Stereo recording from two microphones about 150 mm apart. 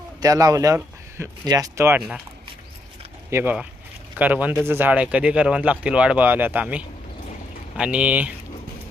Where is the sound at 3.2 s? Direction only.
15° right (ahead or behind).